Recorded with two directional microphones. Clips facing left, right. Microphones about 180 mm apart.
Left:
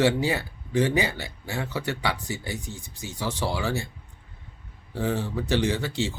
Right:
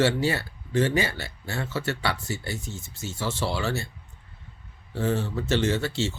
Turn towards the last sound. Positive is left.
turn(degrees=15)  # may be behind; listen again after turning